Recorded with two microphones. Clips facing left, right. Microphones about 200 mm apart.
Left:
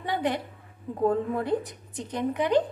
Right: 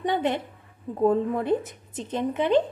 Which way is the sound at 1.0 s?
20° right (ahead or behind).